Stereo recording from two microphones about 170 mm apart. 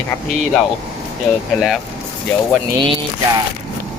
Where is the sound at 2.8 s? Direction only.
30° right (ahead or behind).